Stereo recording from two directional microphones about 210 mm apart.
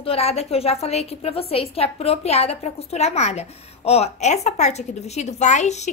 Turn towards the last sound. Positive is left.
turn(degrees=35)  # may be behind; listen again after turning